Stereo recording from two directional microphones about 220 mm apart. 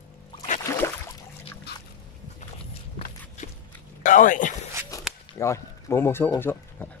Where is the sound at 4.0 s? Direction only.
35° left (ahead or behind).